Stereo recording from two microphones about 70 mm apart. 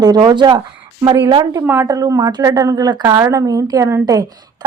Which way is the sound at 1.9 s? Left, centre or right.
Right.